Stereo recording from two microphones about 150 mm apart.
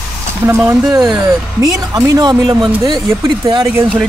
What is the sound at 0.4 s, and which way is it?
Speech, 20° right (ahead or behind).